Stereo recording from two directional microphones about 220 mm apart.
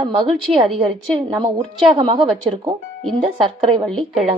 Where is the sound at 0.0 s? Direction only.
25° right (ahead or behind).